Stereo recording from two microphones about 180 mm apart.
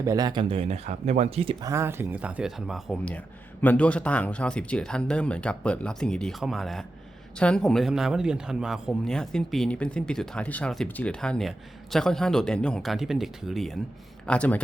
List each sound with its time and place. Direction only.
0.0 s speech: 20° right (ahead or behind); by 1.5 s 35° right (ahead or behind)
1.6 s speech: 15° right (ahead or behind); by 14.6 s 10° left (ahead or behind)